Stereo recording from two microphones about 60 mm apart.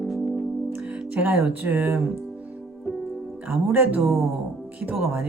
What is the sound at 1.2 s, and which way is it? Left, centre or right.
Speech, right.